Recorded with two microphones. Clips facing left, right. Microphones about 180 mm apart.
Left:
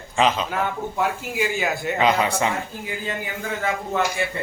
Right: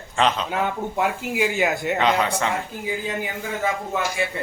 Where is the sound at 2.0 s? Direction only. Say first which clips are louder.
Left 3 dB; 10° left (ahead or behind).